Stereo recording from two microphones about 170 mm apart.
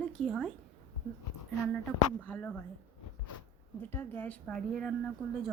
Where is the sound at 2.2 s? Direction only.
10° left (ahead or behind).